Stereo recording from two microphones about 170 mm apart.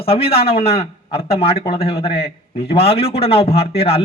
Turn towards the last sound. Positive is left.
turn(degrees=35)  # may be behind; listen again after turning